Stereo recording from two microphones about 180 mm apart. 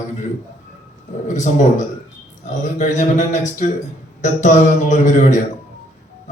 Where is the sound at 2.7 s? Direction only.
40° left (ahead or behind).